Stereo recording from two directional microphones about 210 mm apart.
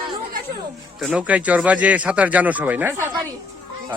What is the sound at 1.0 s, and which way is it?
A man's voice, 5° right (ahead or behind).